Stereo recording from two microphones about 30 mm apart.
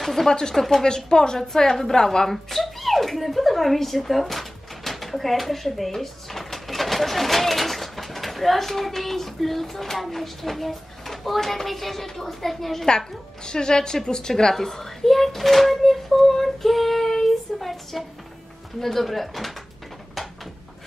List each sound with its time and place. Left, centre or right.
0.0 s a sound: centre
0.3 s a woman's voice: left; by 5.9 s centre
5.9 s drawer open or close: centre
10.0 s a child's voice: centre
13.5 s a woman's voice: left; by 19.5 s centre